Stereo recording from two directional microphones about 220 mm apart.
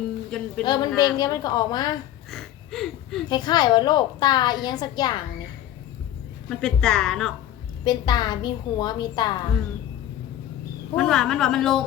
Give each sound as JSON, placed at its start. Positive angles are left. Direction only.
{"t": 0.3, "sound": "a woman's voice", "side_deg": 5}
{"t": 0.6, "sound": "a woman's voice", "side_deg": 20}
{"t": 2.3, "sound": "a sound", "side_deg": 0}
{"t": 3.2, "sound": "a woman's voice", "side_deg": 20}
{"t": 6.5, "sound": "a woman's voice", "side_deg": 5}
{"t": 7.9, "sound": "a woman's voice", "side_deg": 20}
{"t": 10.9, "sound": "a woman's voice", "side_deg": 5}